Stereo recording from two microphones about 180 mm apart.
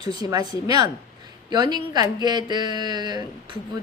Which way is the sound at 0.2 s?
20° right (ahead or behind).